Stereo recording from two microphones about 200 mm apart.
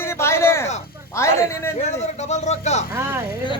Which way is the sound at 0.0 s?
15° left (ahead or behind).